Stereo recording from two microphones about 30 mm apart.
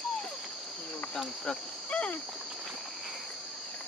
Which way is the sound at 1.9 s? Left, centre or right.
Left.